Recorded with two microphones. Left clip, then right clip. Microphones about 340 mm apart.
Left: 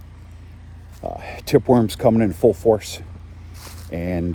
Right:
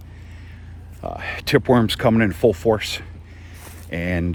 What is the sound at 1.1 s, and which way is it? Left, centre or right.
Speech, right.